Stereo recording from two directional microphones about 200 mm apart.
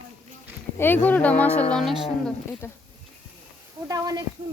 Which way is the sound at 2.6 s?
15° left (ahead or behind).